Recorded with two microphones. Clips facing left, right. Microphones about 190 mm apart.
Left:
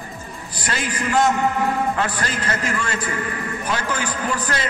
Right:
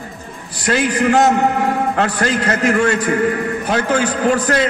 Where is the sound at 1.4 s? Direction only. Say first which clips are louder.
Right 4 dB; 60° right (ahead or behind).